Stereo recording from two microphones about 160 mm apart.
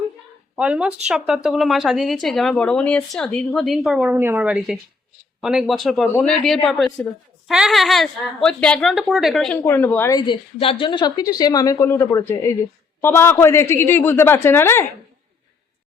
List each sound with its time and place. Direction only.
0.5 s a woman's voice: 5° right (ahead or behind)
9.6 s a woman's voice: 15° left (ahead or behind)
10.2 s a woman's voice: 30° left (ahead or behind); by 14.8 s 15° left (ahead or behind)